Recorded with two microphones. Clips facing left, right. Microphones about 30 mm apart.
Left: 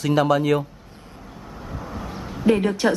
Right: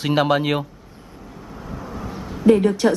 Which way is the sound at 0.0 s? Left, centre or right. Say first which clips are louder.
Even; right.